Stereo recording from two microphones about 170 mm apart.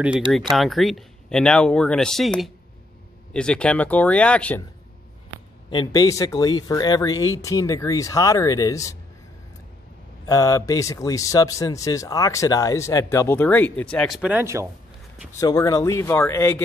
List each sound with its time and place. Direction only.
0.0 s speech: 5° right (ahead or behind)
5.7 s speech: 25° left (ahead or behind)
10.2 s speech: 20° left (ahead or behind); by 14.7 s 15° right (ahead or behind)
15.4 s speech: 20° left (ahead or behind)